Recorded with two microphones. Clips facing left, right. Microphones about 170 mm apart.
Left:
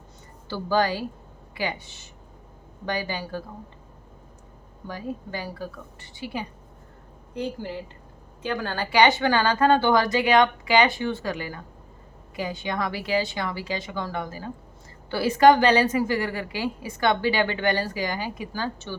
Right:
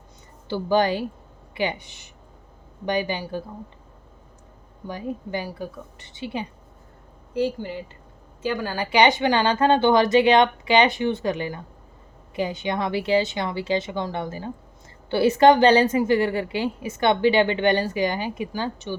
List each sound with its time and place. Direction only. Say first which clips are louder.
0.4 s a woman's voice: right 3 dB; 20° right (ahead or behind)
4.9 s a woman's voice: right 3 dB; 20° right (ahead or behind)
7.3 s a woman's voice: right 5 dB; centre (ahead or behind); by 18.9 s 15° right (ahead or behind)